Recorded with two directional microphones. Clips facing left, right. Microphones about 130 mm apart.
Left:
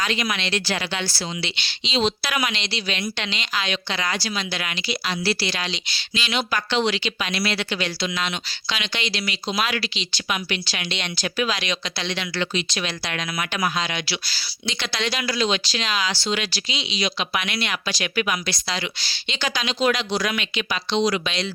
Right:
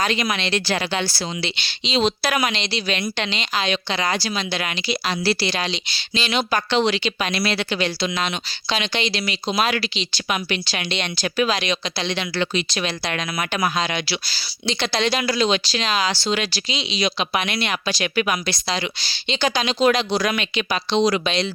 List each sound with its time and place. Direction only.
0.0 s speech: 35° right (ahead or behind)
1.8 s speech: 50° right (ahead or behind)
2.2 s speech: 40° right (ahead or behind)
7.3 s speech: 45° right (ahead or behind)
7.5 s speech: 30° right (ahead or behind)